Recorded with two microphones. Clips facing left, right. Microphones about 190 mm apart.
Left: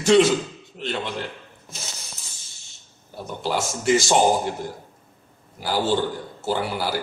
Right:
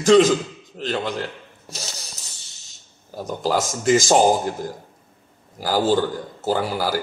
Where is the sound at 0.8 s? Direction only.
40° right (ahead or behind).